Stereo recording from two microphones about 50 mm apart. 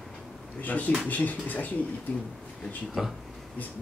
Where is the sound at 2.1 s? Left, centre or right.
Left.